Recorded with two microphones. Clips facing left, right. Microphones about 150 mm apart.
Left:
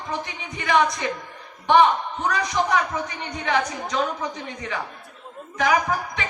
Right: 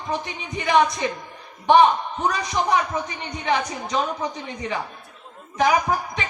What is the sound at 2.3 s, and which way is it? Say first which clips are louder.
A woman's voice: left 1 dB; 20° right (ahead or behind).